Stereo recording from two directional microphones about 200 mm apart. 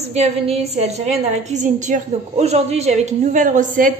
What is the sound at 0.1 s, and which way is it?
A woman's voice, 30° right (ahead or behind).